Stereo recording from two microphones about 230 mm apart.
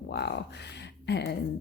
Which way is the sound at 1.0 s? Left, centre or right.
Left.